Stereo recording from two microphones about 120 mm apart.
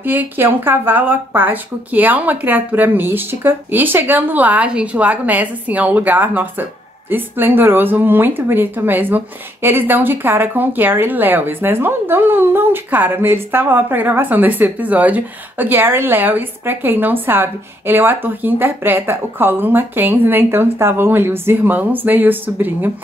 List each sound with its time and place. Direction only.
0.0 s speech: 15° right (ahead or behind)